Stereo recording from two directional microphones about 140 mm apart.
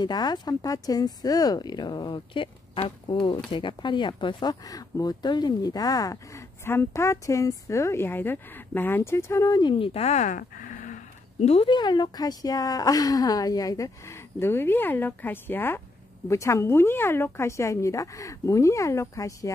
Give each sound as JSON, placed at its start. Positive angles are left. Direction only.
{"t": 0.0, "sound": "speech", "side_deg": 30}